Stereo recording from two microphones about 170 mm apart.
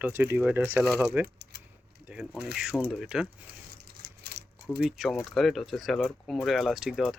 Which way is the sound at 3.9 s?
75° right (ahead or behind).